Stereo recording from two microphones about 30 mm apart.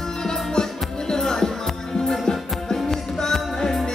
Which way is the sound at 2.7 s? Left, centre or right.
Centre.